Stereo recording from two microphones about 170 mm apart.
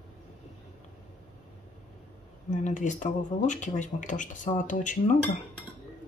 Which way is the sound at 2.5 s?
45° left (ahead or behind).